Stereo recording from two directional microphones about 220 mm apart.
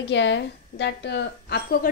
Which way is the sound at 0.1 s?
55° left (ahead or behind).